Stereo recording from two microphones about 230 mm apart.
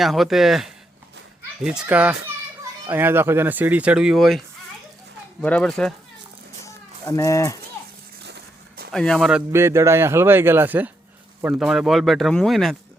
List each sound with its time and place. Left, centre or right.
0.0 s speech: centre
6.7 s livestock: centre
8.2 s a sound: right
8.9 s speech: centre